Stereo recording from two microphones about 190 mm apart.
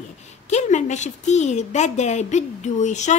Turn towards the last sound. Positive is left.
turn(degrees=40)  # may be behind; listen again after turning